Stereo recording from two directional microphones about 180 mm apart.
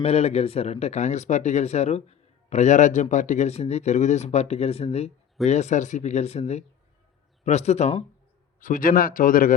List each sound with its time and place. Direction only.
0.0 s speech: 35° left (ahead or behind)
8.6 s speech: 50° left (ahead or behind)